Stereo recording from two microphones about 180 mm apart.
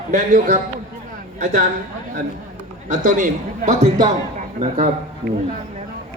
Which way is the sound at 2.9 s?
50° right (ahead or behind).